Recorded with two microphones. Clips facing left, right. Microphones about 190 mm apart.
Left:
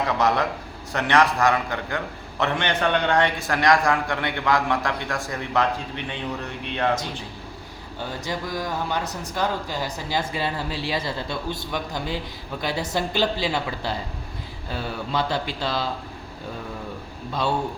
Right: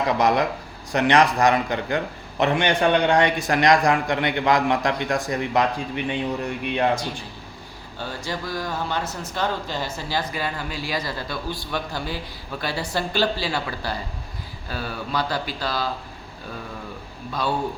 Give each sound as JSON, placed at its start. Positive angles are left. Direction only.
{"t": 0.1, "sound": "a man's voice", "side_deg": -15}
{"t": 8.2, "sound": "speech", "side_deg": 15}
{"t": 10.2, "sound": "a man's voice", "side_deg": 25}